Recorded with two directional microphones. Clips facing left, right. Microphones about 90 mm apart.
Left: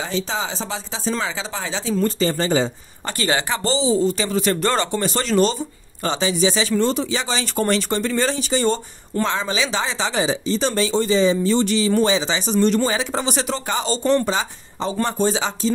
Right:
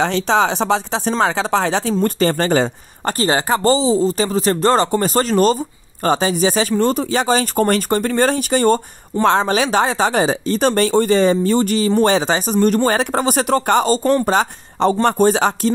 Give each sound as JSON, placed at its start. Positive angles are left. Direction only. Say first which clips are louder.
{"t": 0.0, "sound": "speech", "louder": "right 9 dB", "side_deg": -70}
{"t": 3.2, "sound": "speech", "louder": "right 4 dB", "side_deg": -35}